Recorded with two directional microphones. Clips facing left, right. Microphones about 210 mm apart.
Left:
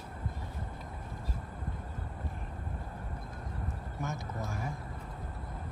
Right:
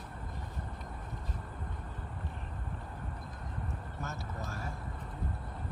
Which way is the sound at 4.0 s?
15° left (ahead or behind).